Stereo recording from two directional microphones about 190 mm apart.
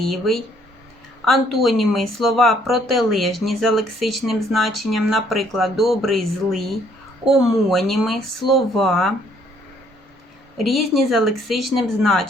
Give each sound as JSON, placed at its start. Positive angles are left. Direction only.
{"t": 0.0, "sound": "speech", "side_deg": 0}
{"t": 10.7, "sound": "speech", "side_deg": 0}